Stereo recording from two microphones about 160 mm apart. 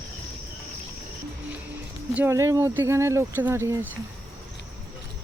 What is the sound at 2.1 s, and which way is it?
Speech, 15° right (ahead or behind).